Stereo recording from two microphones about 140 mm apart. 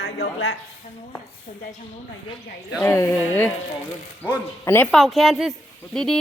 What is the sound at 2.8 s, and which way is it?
Speech, 20° left (ahead or behind).